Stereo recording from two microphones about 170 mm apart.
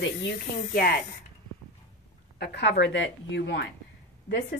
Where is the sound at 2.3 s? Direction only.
80° left.